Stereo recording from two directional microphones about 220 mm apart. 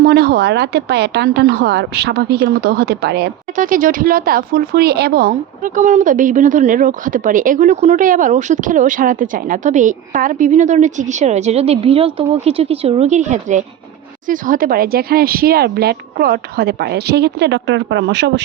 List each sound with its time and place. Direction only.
0.0 s speech: 45° right (ahead or behind)